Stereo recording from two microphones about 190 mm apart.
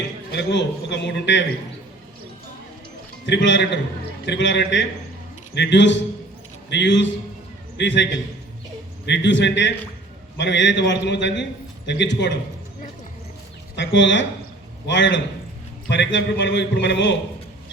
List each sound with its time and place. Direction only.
0.3 s a man's voice: 65° left (ahead or behind)
3.2 s a man's voice: 70° left (ahead or behind)
13.7 s a man's voice: 70° left (ahead or behind)